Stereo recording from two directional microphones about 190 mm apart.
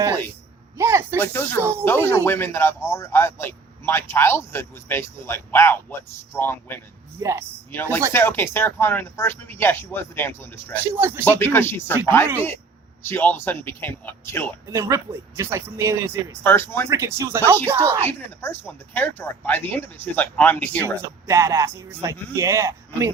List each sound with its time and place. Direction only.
0.8 s speech: 15° right (ahead or behind)
1.2 s speech: 10° left (ahead or behind)
7.2 s speech: 15° right (ahead or behind)
7.7 s speech: 10° left (ahead or behind)
10.9 s speech: 10° right (ahead or behind)
11.3 s speech: 10° left (ahead or behind)
14.7 s speech: 15° right (ahead or behind)
16.4 s speech: 10° left (ahead or behind)
16.9 s speech: 15° right (ahead or behind)
18.1 s speech: 10° left (ahead or behind)
20.8 s speech: 15° right (ahead or behind)